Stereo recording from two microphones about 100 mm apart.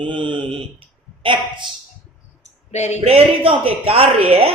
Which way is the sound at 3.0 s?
75° right (ahead or behind).